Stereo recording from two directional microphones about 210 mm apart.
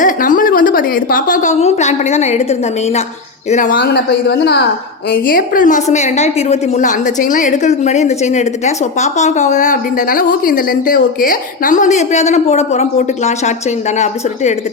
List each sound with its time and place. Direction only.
0.0 s a woman's voice: 40° left (ahead or behind)
3.8 s speech: 55° left (ahead or behind)
5.1 s a woman's voice: 40° left (ahead or behind)